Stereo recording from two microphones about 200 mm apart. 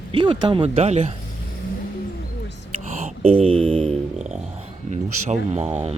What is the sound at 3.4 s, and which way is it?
Music, 30° right (ahead or behind).